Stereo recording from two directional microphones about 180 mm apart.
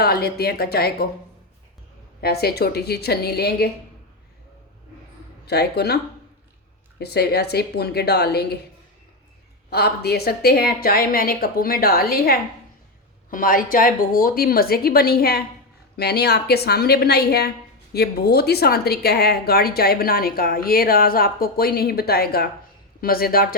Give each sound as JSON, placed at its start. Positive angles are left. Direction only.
{"t": 0.0, "sound": "a woman's voice", "side_deg": 60}
{"t": 2.2, "sound": "a woman's voice", "side_deg": 60}
{"t": 5.5, "sound": "a woman's voice", "side_deg": 65}
{"t": 7.0, "sound": "a woman's voice", "side_deg": 65}
{"t": 9.6, "sound": "a woman's voice", "side_deg": 60}